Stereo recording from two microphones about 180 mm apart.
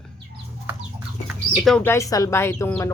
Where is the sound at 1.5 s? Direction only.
Centre (ahead or behind).